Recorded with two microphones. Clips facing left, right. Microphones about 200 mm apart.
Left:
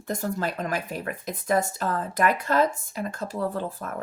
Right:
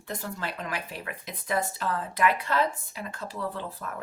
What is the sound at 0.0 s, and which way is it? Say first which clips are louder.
Speech: left 7 dB; 45° left (ahead or behind).